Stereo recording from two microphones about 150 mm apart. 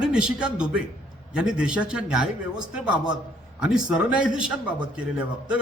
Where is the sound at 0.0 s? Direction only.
5° right (ahead or behind).